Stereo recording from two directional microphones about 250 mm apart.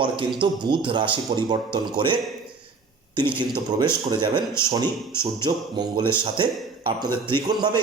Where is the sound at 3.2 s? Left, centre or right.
Centre.